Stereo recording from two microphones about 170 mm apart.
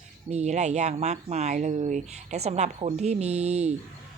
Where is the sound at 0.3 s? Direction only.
40° right (ahead or behind).